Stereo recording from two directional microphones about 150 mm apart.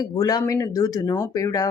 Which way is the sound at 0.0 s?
25° left (ahead or behind).